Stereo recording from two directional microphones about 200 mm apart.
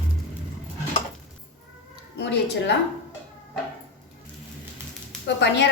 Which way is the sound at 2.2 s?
55° left (ahead or behind).